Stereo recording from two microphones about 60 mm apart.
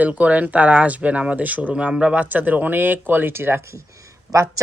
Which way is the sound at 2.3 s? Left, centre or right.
Right.